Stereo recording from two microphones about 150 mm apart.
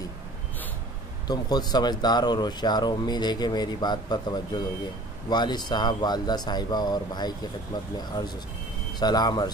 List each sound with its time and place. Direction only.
1.2 s speech: 25° left (ahead or behind)
9.0 s speech: 25° left (ahead or behind)